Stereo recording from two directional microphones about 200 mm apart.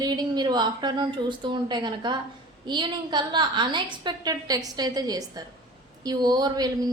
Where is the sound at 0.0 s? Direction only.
20° right (ahead or behind).